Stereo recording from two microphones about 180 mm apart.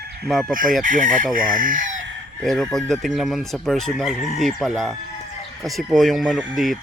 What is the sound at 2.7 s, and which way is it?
Speech, centre (ahead or behind).